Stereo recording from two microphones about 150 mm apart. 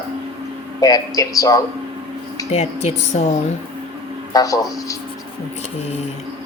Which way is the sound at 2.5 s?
45° left (ahead or behind).